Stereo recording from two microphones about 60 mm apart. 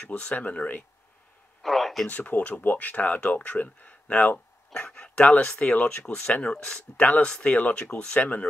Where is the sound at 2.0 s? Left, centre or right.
Left.